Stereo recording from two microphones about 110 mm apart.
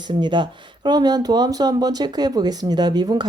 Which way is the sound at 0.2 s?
45° right (ahead or behind).